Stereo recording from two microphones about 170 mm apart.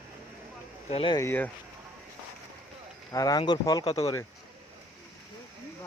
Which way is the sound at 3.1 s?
20° left (ahead or behind).